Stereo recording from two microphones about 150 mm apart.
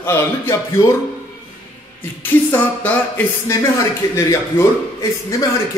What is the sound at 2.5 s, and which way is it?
Speech, 10° left (ahead or behind).